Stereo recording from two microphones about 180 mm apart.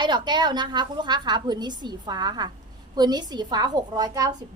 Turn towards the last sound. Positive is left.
turn(degrees=-20)  # may be behind; listen again after turning